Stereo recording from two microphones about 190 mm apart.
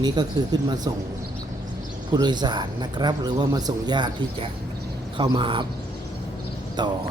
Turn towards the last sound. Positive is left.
turn(degrees=-25)  # may be behind; listen again after turning